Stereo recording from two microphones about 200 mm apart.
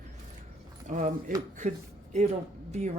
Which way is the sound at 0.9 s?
40° right (ahead or behind).